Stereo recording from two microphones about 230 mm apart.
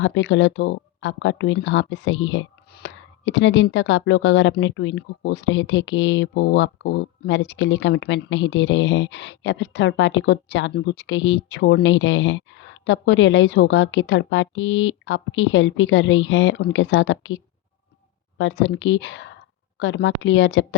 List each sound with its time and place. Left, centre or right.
0.0 s speech: left